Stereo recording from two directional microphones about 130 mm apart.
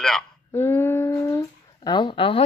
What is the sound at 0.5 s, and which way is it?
Humming, 20° left (ahead or behind).